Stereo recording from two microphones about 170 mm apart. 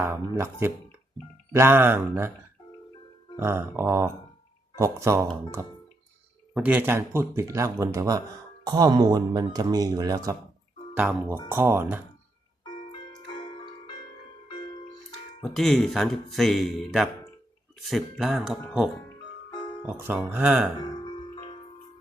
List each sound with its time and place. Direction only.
0.1 s speech: 15° right (ahead or behind)
3.3 s speech: 15° right (ahead or behind)
10.9 s speech: 10° right (ahead or behind)
15.4 s speech: centre (ahead or behind)
20.3 s speech: 10° right (ahead or behind)
21.0 s music: 25° left (ahead or behind)